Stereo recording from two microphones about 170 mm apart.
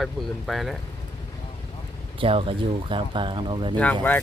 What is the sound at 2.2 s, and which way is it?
Speech, 35° right (ahead or behind).